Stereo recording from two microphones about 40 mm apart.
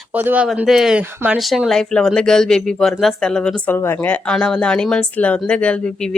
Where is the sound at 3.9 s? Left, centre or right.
Left.